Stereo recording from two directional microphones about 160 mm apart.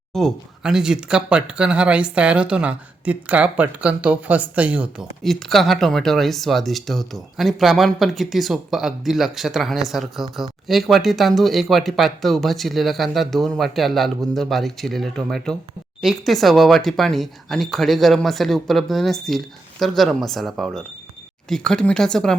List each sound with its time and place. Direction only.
0.1 s speech: centre (ahead or behind)